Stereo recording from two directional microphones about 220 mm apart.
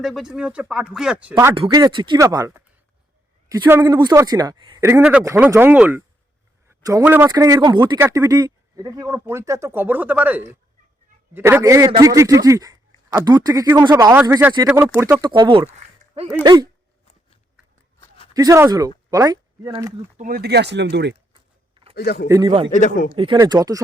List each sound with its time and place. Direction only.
0.0 s speech: centre (ahead or behind)
1.5 s speech: 20° right (ahead or behind)
14.7 s speech: 5° right (ahead or behind)
18.3 s speech: 15° right (ahead or behind)
20.1 s speech: 40° right (ahead or behind)
21.9 s speech: 45° left (ahead or behind)
22.3 s speech: 15° right (ahead or behind)
22.7 s speech: 35° left (ahead or behind)
23.1 s speech: 20° right (ahead or behind)